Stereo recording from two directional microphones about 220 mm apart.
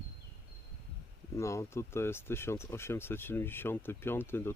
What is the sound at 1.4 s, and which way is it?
Speech, 15° left (ahead or behind).